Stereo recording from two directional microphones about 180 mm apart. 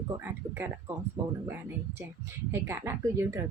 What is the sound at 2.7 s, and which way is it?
Speech, 15° right (ahead or behind).